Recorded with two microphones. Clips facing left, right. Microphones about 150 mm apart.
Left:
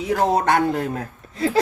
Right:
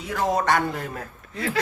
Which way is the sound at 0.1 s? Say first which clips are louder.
Left 4 dB; 60° left (ahead or behind).